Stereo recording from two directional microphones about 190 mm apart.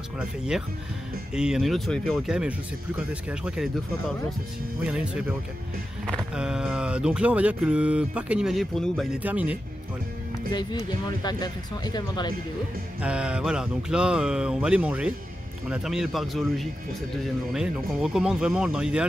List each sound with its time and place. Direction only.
1.3 s speech: 5° right (ahead or behind)
4.8 s speech: 5° right (ahead or behind)
9.2 s speech: 5° right (ahead or behind)
10.5 s speech: 25° left (ahead or behind)
13.0 s speech: 5° right (ahead or behind)